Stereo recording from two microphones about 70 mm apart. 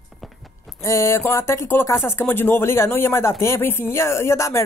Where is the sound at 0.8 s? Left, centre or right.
Left.